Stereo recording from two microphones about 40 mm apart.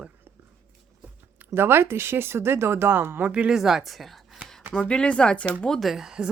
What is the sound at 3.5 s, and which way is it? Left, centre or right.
Speech, centre.